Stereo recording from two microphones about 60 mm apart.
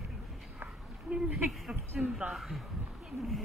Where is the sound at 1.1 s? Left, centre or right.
Right.